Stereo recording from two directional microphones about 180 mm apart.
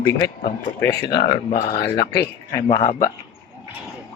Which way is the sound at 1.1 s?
65° left (ahead or behind).